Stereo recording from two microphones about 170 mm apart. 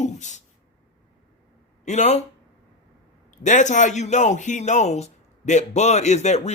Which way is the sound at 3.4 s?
45° left (ahead or behind).